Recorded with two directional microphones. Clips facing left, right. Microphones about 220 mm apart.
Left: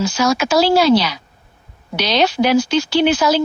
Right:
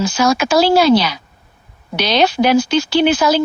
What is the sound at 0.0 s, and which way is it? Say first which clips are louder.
Speech: right 2 dB; 55° right (ahead or behind).